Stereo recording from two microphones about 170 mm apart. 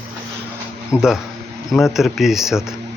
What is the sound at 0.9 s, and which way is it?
Speech, 15° left (ahead or behind).